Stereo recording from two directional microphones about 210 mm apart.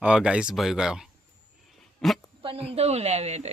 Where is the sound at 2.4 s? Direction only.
25° right (ahead or behind).